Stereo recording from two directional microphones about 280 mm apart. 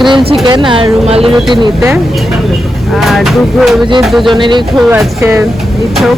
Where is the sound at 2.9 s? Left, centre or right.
Centre.